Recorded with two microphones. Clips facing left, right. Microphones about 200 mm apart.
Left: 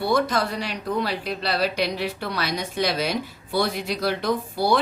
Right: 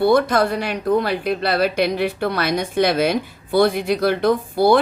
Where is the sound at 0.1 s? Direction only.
55° right (ahead or behind).